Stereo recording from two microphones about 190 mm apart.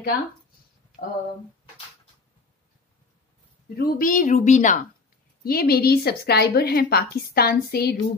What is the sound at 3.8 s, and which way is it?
Speech, 50° left (ahead or behind).